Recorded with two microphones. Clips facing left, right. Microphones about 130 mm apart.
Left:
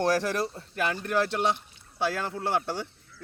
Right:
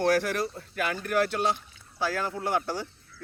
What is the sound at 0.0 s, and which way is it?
Speech, 35° left (ahead or behind).